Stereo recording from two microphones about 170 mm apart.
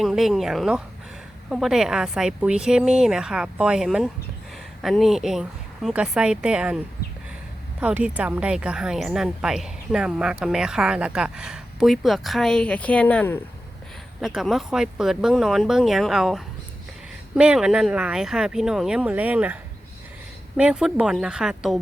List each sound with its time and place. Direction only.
0.0 s speech: centre (ahead or behind)
7.8 s speech: 5° right (ahead or behind)
20.6 s speech: 5° right (ahead or behind)